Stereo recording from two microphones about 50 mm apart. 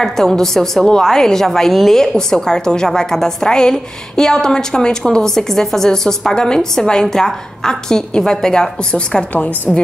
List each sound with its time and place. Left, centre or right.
0.0 s a woman's voice: centre
1.7 s a woman's voice: centre
2.0 s a woman's voice: centre